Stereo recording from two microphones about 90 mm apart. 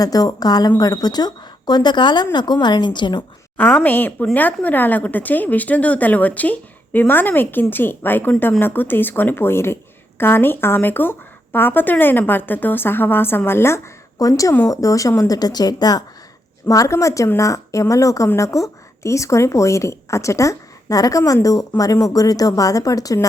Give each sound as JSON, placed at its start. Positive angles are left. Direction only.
{"t": 0.0, "sound": "a woman's voice", "side_deg": 45}
{"t": 3.8, "sound": "speech", "side_deg": 20}